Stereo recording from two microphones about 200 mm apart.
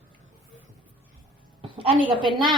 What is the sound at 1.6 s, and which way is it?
Speech, 25° right (ahead or behind).